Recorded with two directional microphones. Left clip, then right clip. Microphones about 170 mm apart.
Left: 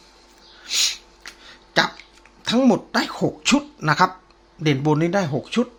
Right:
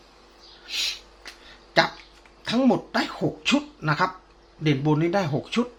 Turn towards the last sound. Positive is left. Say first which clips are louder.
# left 3 dB
turn(degrees=10)  # may be behind; listen again after turning